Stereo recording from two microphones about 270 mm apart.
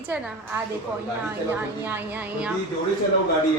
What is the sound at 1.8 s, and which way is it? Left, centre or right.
Speech, centre.